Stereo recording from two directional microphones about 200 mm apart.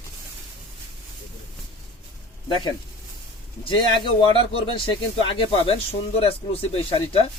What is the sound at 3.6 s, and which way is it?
Speech, 25° left (ahead or behind).